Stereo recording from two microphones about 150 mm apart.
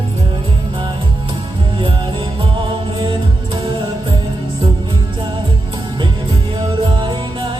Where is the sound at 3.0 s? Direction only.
35° right (ahead or behind).